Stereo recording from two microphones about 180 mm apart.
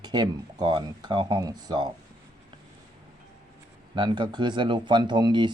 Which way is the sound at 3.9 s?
25° right (ahead or behind).